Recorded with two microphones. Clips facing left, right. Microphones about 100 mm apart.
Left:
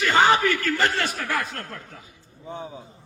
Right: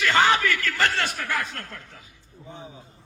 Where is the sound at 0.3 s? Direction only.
40° left (ahead or behind).